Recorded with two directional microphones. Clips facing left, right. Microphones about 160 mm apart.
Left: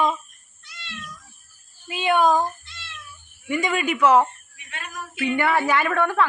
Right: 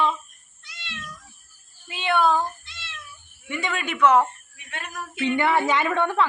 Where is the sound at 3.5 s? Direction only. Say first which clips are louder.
Left 5 dB; 15° left (ahead or behind).